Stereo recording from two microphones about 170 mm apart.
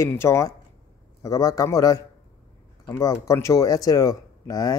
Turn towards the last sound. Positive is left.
turn(degrees=25)  # may be behind; listen again after turning